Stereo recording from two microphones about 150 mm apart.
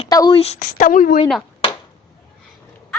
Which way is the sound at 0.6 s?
65° left (ahead or behind).